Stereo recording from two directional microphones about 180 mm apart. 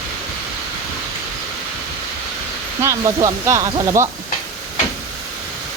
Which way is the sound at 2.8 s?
20° right (ahead or behind).